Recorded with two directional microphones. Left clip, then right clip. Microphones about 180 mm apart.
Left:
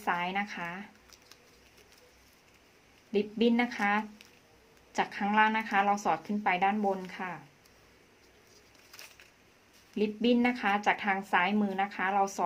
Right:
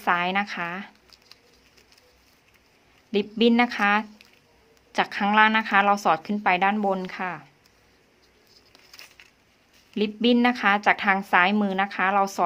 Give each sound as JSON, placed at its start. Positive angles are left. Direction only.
{"t": 0.0, "sound": "speech", "side_deg": -35}
{"t": 3.1, "sound": "speech", "side_deg": -35}
{"t": 9.9, "sound": "speech", "side_deg": -35}